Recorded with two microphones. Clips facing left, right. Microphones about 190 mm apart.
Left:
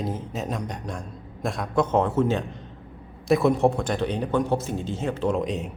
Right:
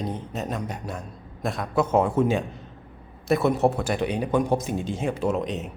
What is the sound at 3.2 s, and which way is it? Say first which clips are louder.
A man's voice: left 1 dB; centre (ahead or behind).